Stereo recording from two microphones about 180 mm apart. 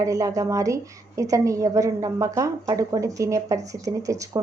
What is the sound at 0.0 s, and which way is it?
A woman's voice, 20° right (ahead or behind).